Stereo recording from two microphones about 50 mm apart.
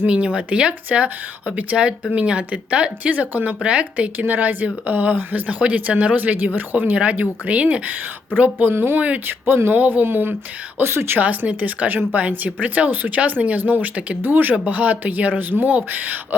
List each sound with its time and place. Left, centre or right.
0.0 s speech: right
8.7 s speech: right
9.0 s speech: right
9.2 s speech: right
10.8 s speech: right
11.2 s speech: right
14.2 s speech: right
14.5 s speech: right